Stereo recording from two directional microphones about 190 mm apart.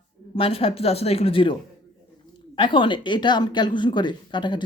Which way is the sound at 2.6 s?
25° left (ahead or behind).